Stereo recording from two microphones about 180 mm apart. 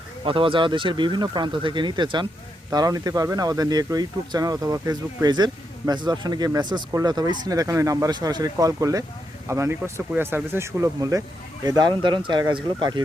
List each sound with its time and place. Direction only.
0.3 s speech: 30° right (ahead or behind)